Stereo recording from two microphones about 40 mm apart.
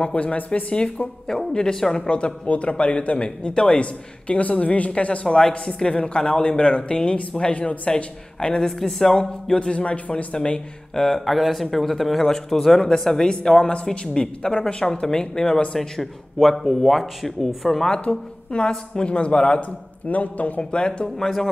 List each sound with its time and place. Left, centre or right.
0.0 s speech: left
1.5 s speech: centre
3.8 s speech: left
7.9 s speech: centre
8.7 s speech: centre; by 10.6 s left
11.0 s speech: centre
11.2 s speech: centre
16.3 s speech: centre
17.9 s speech: left
20.1 s speech: left
20.7 s speech: left